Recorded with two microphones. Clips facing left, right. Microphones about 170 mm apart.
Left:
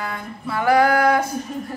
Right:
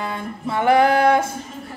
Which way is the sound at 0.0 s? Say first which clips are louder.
Right 3 dB; 25° right (ahead or behind).